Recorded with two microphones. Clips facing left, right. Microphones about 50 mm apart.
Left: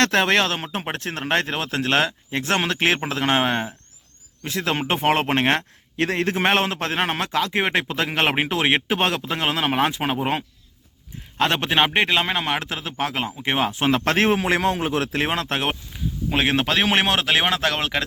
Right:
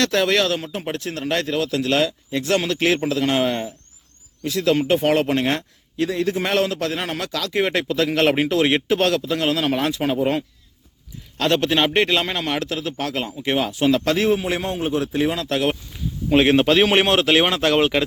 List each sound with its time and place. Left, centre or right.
0.0 s a man's voice: left
14.3 s a man's voice: left
15.3 s speech: left
15.9 s a man's voice: centre